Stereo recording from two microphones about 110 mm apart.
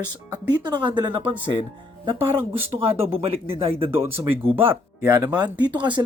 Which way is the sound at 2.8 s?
60° right (ahead or behind).